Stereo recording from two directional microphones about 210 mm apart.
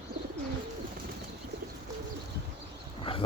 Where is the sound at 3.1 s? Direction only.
25° left (ahead or behind).